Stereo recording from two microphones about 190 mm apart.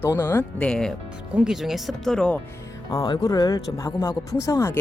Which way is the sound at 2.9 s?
20° left (ahead or behind).